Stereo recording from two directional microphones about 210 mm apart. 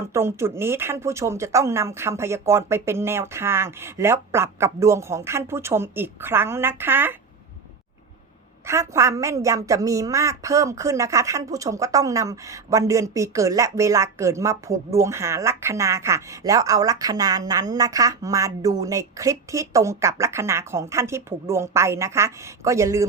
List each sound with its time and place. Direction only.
0.1 s a woman's voice: 10° right (ahead or behind)
8.6 s a woman's voice: 15° right (ahead or behind)